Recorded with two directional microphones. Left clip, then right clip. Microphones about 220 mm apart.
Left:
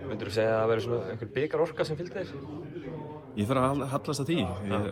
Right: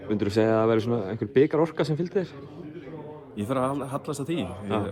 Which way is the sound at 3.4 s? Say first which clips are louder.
Even; 10° right (ahead or behind).